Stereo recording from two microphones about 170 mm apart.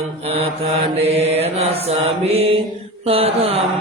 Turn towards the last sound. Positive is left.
turn(degrees=-35)  # may be behind; listen again after turning